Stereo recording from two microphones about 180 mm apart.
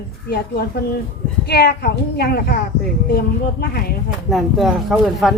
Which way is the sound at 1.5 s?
65° left (ahead or behind).